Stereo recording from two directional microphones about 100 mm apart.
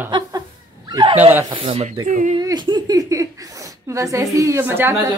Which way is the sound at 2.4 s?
45° right (ahead or behind).